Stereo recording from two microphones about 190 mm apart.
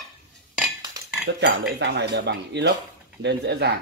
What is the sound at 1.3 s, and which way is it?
Speech, 65° right (ahead or behind).